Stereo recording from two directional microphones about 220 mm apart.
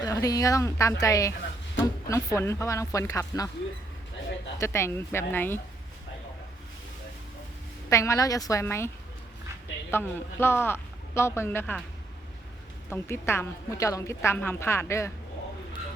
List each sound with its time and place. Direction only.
0.0 s a woman's voice: 15° left (ahead or behind)
4.5 s a woman's voice: 10° left (ahead or behind)
7.9 s a woman's voice: 15° left (ahead or behind)
9.9 s a woman's voice: 10° left (ahead or behind)
12.9 s a woman's voice: 10° left (ahead or behind)